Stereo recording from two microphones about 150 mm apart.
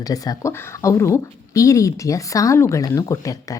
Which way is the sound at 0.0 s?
25° left (ahead or behind).